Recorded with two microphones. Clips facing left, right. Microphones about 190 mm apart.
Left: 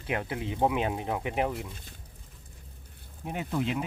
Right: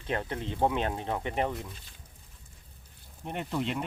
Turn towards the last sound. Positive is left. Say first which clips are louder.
# left 2 dB
turn(degrees=0)  # may be behind; listen again after turning